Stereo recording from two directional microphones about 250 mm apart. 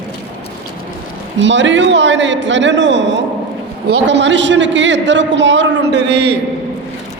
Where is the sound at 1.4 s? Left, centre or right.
Right.